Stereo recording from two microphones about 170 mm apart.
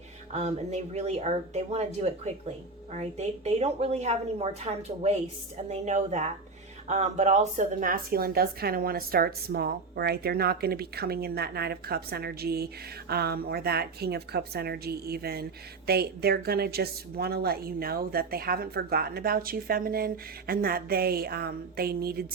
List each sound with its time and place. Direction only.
0.3 s a woman's voice: 40° right (ahead or behind); by 22.3 s 65° right (ahead or behind)